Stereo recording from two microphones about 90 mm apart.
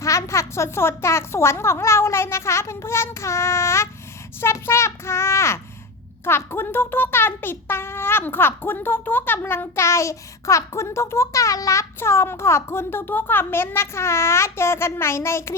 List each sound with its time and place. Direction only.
0.0 s a woman's voice: 35° left (ahead or behind)